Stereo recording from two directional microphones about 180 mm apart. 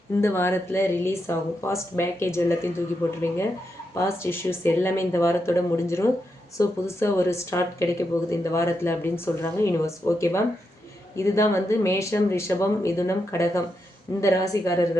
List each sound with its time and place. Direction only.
0.2 s speech: 15° left (ahead or behind)
3.9 s speech: 15° left (ahead or behind)